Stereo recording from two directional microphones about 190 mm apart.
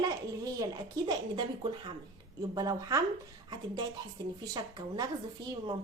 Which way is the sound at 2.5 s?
20° right (ahead or behind).